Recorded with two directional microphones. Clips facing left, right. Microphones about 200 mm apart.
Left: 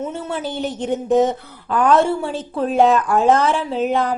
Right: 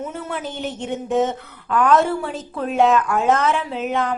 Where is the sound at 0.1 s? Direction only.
30° left (ahead or behind).